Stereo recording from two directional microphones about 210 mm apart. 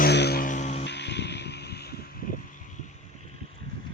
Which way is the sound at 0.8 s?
55° left (ahead or behind).